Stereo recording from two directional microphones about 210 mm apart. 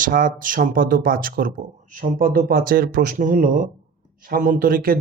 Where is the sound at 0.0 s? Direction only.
40° right (ahead or behind).